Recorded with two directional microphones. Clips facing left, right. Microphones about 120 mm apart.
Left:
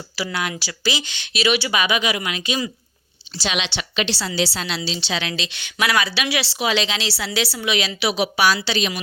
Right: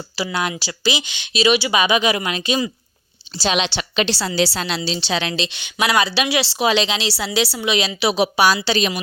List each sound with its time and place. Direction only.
0.2 s a woman's voice: 25° right (ahead or behind)
5.3 s a woman's voice: 20° right (ahead or behind)